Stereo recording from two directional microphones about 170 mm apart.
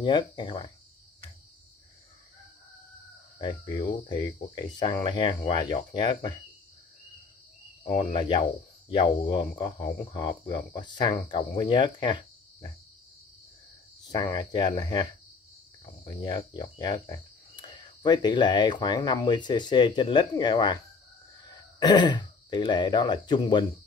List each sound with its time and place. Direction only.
0.0 s speech: 25° left (ahead or behind)
3.3 s speech: 25° left (ahead or behind)
8.0 s speech: 30° left (ahead or behind)
14.1 s speech: 20° left (ahead or behind)